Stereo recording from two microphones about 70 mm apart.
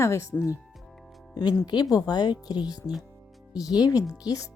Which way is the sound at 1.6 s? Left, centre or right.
Left.